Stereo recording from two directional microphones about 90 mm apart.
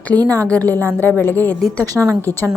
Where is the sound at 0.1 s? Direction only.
45° right (ahead or behind).